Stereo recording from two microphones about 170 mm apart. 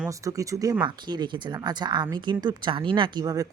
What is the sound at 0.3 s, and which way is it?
Speech, 20° right (ahead or behind).